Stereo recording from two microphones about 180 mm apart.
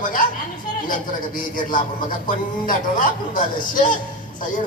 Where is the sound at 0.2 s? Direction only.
50° left (ahead or behind).